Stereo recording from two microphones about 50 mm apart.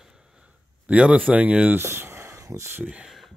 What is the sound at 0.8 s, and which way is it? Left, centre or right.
Speech, right.